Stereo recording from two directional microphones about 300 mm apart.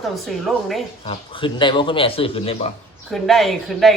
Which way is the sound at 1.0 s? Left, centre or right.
Centre.